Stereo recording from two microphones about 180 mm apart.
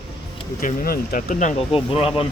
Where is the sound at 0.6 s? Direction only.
50° left (ahead or behind); by 2.1 s 30° left (ahead or behind).